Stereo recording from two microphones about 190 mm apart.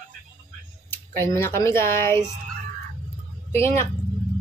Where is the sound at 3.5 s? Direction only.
15° left (ahead or behind).